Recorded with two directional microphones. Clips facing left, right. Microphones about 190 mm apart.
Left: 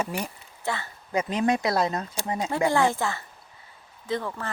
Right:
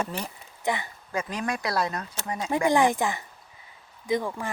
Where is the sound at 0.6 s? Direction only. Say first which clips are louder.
Right 2 dB; 15° right (ahead or behind).